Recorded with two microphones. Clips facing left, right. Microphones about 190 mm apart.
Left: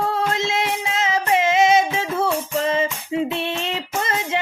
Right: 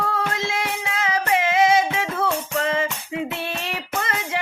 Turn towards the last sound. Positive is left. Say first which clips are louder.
# left 3 dB
turn(degrees=25)  # may be behind; listen again after turning